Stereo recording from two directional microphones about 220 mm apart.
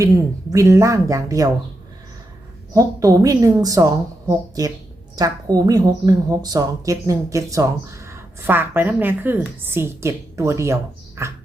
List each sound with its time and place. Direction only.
0.0 s a woman's voice: 15° right (ahead or behind)
2.7 s a woman's voice: 15° right (ahead or behind)
11.2 s a sound: 15° right (ahead or behind)